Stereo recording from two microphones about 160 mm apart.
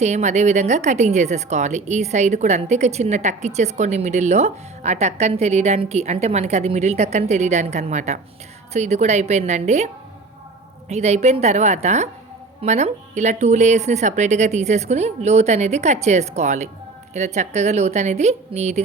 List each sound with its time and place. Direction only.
0.0 s speech: 45° right (ahead or behind)